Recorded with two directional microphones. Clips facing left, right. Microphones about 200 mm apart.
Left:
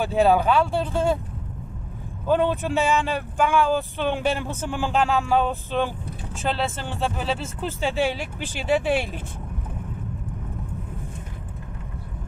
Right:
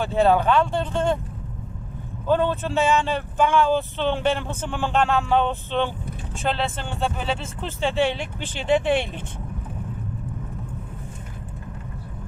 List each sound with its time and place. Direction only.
0.0 s speech: 15° left (ahead or behind)
2.2 s speech: 15° left (ahead or behind)